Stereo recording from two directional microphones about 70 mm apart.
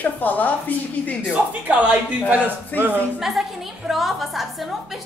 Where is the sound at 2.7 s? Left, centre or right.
Left.